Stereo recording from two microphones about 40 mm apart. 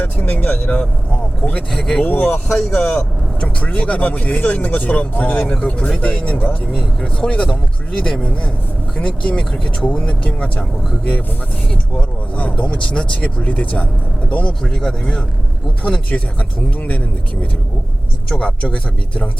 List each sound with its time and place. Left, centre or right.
0.0 s speech: left
1.7 s speech: centre
2.0 s speech: left
2.6 s speech: left
12.4 s speech: left
14.6 s speech: centre
16.0 s speech: left
18.3 s speech: left